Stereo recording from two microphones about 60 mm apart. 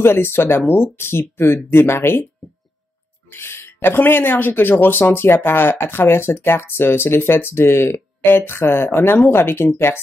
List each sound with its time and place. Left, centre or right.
0.0 s speech: left
3.3 s speech: left